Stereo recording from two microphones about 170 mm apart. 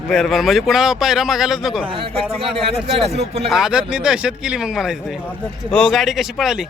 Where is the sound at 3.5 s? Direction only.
5° right (ahead or behind).